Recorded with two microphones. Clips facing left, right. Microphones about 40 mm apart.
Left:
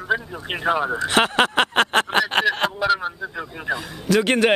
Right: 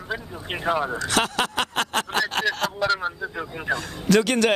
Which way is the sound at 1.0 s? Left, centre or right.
Left.